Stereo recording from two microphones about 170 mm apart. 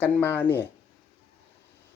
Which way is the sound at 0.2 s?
10° left (ahead or behind).